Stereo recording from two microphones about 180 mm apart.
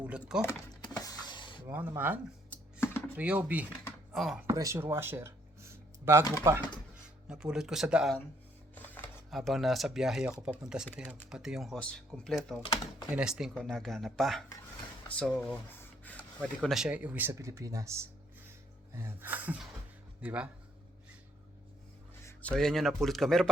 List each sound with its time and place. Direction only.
0.4 s a sound: 20° left (ahead or behind)
1.6 s speech: 15° right (ahead or behind)
2.5 s typing: 10° left (ahead or behind)
3.2 s speech: 10° right (ahead or behind)
4.4 s speech: 15° right (ahead or behind)
7.3 s speech: 5° right (ahead or behind)
8.7 s speech: 10° left (ahead or behind)
12.6 s speech: 25° left (ahead or behind)
13.1 s speech: 5° right (ahead or behind)
15.7 s rub: 10° left (ahead or behind)
16.4 s speech: centre (ahead or behind); by 17.9 s 15° right (ahead or behind)
18.9 s speech: 10° right (ahead or behind)
22.2 s speech: 10° left (ahead or behind)